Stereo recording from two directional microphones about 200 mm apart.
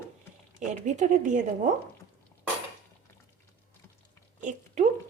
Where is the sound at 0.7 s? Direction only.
40° right (ahead or behind).